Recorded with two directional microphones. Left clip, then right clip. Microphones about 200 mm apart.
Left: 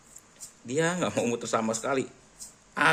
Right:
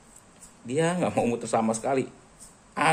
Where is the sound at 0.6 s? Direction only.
15° left (ahead or behind).